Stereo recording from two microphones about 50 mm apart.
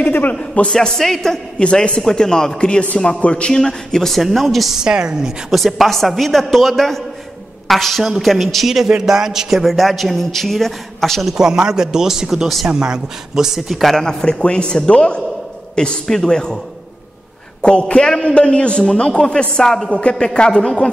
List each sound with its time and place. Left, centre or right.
0.0 s a man's voice: left
0.3 s a man's voice: left
0.7 s speech: centre
1.6 s speech: centre
4.8 s speech: centre
5.5 s a man's voice: centre
11.3 s speech: centre
12.6 s speech: centre
13.9 s a man's voice: centre
17.6 s a man's voice: left